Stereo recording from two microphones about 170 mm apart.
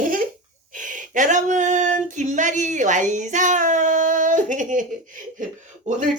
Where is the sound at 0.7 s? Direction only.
50° right (ahead or behind).